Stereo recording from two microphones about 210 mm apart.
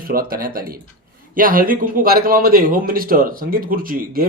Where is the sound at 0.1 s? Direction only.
45° right (ahead or behind).